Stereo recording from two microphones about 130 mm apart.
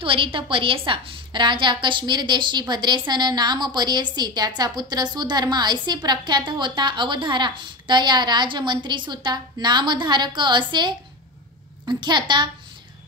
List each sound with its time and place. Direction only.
0.0 s a woman's voice: 45° right (ahead or behind)